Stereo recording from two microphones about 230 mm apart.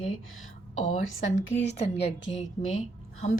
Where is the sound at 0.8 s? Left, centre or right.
Left.